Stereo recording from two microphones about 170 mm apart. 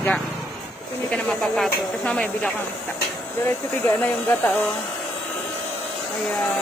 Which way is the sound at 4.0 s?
10° left (ahead or behind).